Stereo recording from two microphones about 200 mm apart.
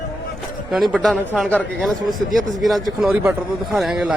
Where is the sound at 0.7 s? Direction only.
Centre (ahead or behind).